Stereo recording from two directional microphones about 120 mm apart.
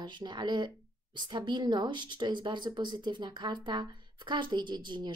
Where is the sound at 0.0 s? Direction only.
40° right (ahead or behind).